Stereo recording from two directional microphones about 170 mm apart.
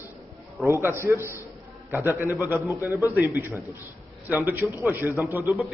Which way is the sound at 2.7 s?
20° left (ahead or behind).